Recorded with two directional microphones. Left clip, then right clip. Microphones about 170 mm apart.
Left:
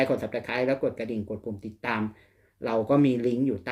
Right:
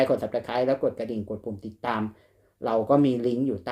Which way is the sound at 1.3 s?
20° left (ahead or behind).